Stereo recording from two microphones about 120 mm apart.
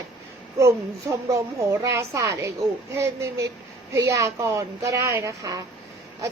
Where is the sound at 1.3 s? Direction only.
25° right (ahead or behind).